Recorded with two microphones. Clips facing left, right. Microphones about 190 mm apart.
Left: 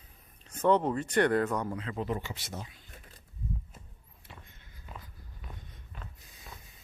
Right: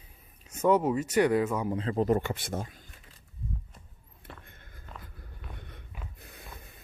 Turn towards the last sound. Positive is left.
turn(degrees=-60)  # may be behind; listen again after turning